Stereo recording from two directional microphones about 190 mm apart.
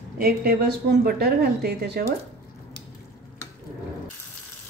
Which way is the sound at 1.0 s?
55° right (ahead or behind).